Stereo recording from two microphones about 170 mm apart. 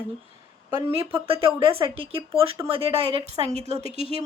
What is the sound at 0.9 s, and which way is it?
Speech, 35° right (ahead or behind).